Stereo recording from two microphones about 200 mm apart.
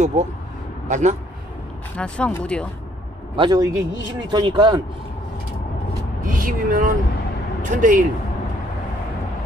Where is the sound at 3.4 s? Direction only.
20° right (ahead or behind).